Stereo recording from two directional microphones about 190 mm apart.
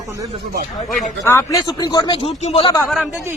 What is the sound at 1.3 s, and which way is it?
Speech, 15° left (ahead or behind).